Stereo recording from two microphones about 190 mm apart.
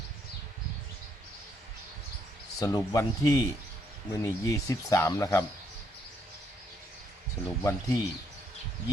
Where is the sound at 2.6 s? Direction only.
15° left (ahead or behind).